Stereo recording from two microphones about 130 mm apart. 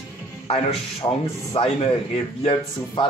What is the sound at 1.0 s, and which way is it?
Speech, 30° left (ahead or behind).